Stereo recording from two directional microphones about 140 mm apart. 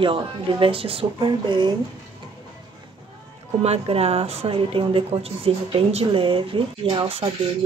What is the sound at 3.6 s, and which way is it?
A woman's voice, 50° right (ahead or behind).